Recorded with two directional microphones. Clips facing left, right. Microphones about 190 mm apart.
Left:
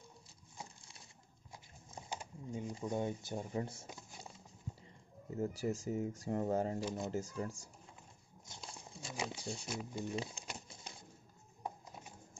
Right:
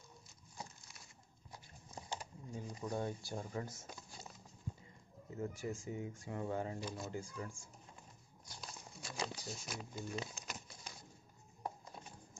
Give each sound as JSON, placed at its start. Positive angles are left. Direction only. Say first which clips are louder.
{"t": 2.0, "sound": "speech", "louder": "left 3 dB", "side_deg": 15}
{"t": 3.8, "sound": "a sound", "louder": "left 1 dB", "side_deg": 15}
{"t": 5.3, "sound": "speech", "louder": "left 5 dB", "side_deg": 35}
{"t": 6.8, "sound": "speech", "louder": "left 5 dB", "side_deg": 20}
{"t": 7.1, "sound": "speech", "louder": "left 5 dB", "side_deg": 40}
{"t": 8.5, "sound": "a sound", "louder": "left 1 dB", "side_deg": 25}
{"t": 11.6, "sound": "music", "louder": "even", "side_deg": 10}